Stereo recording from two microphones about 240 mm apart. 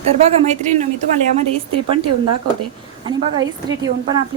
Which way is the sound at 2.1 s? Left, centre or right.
Right.